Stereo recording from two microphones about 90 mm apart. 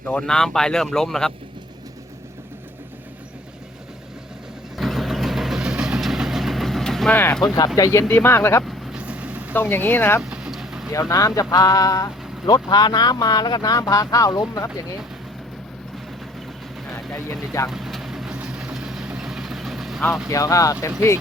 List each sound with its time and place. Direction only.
0.1 s speech: 10° left (ahead or behind)
4.8 s vehicle: centre (ahead or behind)
7.1 s speech: 25° left (ahead or behind)
8.6 s vehicle: centre (ahead or behind)
9.0 s vehicle: 15° right (ahead or behind)
9.6 s speech: 25° left (ahead or behind)
10.2 s vehicle: 10° right (ahead or behind)
11.1 s speech: 40° left (ahead or behind)
16.9 s vehicle: 30° left (ahead or behind)
17.7 s vehicle: 5° right (ahead or behind)
20.1 s speech: 5° right (ahead or behind)
20.3 s speech: 40° left (ahead or behind)